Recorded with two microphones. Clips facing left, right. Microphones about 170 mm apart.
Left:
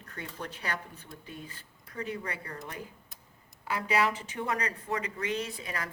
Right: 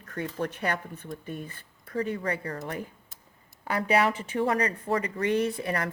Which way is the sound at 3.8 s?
55° right (ahead or behind).